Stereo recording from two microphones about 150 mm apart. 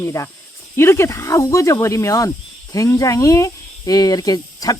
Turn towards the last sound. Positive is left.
turn(degrees=25)  # may be behind; listen again after turning